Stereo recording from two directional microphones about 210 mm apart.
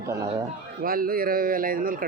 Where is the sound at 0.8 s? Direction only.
45° right (ahead or behind).